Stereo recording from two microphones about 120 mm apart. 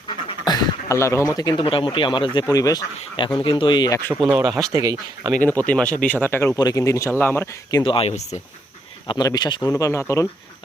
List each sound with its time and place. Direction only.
0.1 s a sound: 40° left (ahead or behind)
1.5 s speech: 45° left (ahead or behind); by 2.8 s 30° left (ahead or behind)
3.3 s speech: 45° left (ahead or behind)
4.4 s speech: 30° right (ahead or behind)
5.4 s speech: 15° left (ahead or behind)
6.6 s speech: 30° left (ahead or behind)
7.9 s speech: 55° left (ahead or behind)
9.0 s speech: 35° left (ahead or behind)